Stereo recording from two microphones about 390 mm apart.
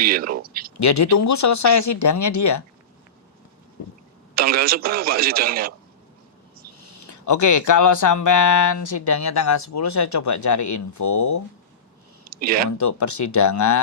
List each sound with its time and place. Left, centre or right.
0.0 s speech: right
0.8 s speech: left
4.4 s speech: right
6.7 s speech: left
12.3 s speech: right
12.7 s speech: left